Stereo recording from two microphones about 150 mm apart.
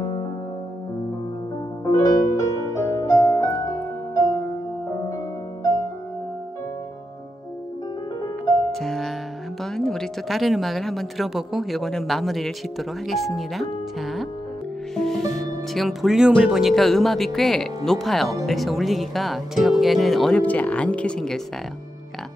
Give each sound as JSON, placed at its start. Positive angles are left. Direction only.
{"t": 0.0, "sound": "music", "side_deg": 25}
{"t": 1.9, "sound": "music", "side_deg": 25}
{"t": 8.7, "sound": "music", "side_deg": 0}
{"t": 9.6, "sound": "a woman's voice", "side_deg": 5}